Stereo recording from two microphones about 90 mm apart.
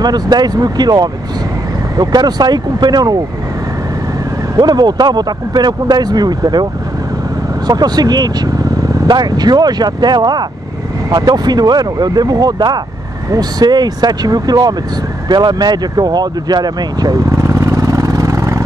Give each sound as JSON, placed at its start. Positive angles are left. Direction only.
{"t": 0.0, "sound": "speech", "side_deg": -50}
{"t": 4.6, "sound": "speech", "side_deg": -50}
{"t": 17.4, "sound": "vehicle", "side_deg": -35}